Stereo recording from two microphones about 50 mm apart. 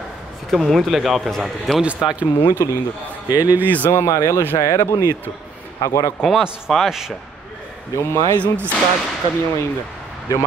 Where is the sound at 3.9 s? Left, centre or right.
Left.